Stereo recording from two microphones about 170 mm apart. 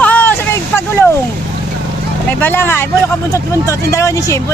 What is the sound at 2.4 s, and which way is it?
Speech, 10° left (ahead or behind).